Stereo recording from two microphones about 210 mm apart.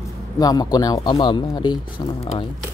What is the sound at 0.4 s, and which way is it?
Speech, 20° left (ahead or behind).